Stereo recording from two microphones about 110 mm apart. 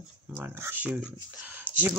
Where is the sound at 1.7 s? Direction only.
50° left (ahead or behind).